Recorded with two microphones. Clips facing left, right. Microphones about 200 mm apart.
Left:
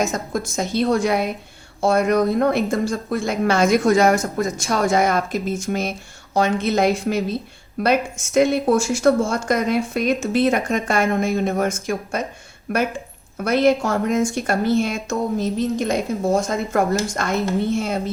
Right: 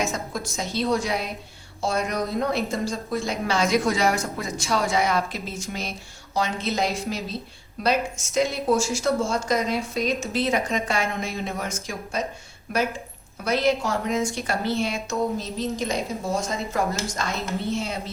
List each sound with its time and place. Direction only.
0.1 s a woman's voice: 50° left (ahead or behind)